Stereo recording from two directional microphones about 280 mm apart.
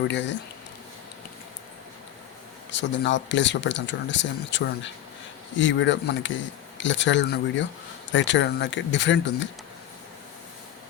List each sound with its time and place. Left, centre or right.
0.1 s speech: left
2.7 s speech: left